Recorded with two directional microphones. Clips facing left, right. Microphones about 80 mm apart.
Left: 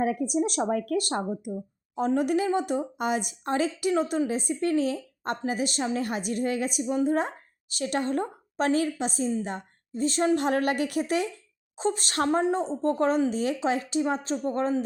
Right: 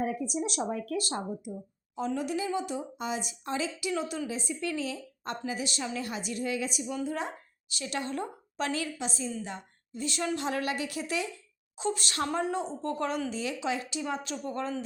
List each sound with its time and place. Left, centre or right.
0.0 s speech: left
0.3 s speech: left
0.7 s a woman's voice: left
12.4 s a woman's voice: left